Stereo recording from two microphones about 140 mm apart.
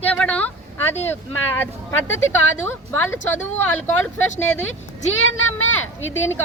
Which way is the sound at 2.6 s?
15° left (ahead or behind).